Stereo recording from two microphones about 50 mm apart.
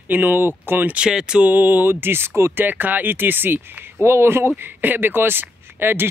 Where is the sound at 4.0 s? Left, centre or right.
Right.